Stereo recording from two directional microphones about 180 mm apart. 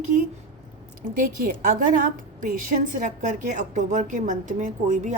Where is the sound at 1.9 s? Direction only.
50° right (ahead or behind).